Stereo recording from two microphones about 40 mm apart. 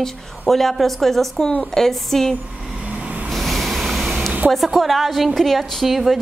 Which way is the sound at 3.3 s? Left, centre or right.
Centre.